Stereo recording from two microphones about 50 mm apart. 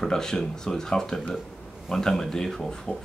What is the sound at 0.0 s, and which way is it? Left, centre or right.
Speech, centre.